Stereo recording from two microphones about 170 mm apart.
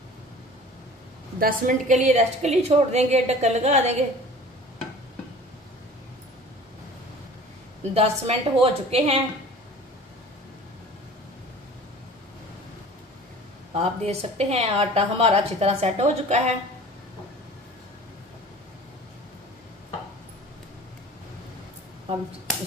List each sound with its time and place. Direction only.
1.4 s a woman's voice: 50° right (ahead or behind)
7.9 s a woman's voice: 35° right (ahead or behind)
13.7 s a woman's voice: 40° right (ahead or behind)